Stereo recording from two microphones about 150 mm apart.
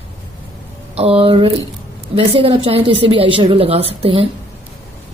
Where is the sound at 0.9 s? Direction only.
40° right (ahead or behind).